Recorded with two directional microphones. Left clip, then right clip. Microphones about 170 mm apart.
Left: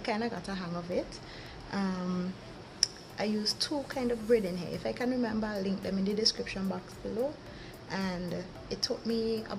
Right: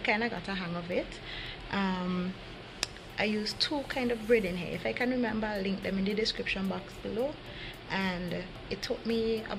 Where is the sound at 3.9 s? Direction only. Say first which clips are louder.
Left 1 dB; centre (ahead or behind).